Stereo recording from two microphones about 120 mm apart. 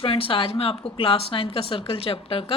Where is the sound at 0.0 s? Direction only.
50° left (ahead or behind).